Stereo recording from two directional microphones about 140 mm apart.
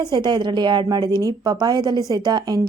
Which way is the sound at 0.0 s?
30° right (ahead or behind).